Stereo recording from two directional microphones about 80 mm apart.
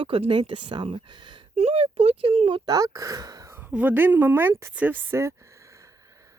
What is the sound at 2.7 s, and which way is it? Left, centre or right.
Speech, right.